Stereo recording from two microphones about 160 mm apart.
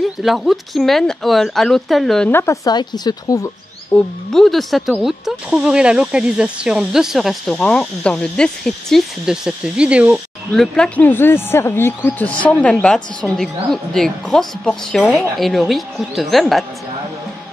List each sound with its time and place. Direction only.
0.2 s speech: centre (ahead or behind)
2.3 s a woman's voice: 20° left (ahead or behind)
3.9 s speech: 5° left (ahead or behind)